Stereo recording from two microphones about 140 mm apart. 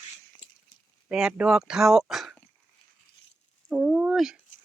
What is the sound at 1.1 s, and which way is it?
Speech, 5° right (ahead or behind).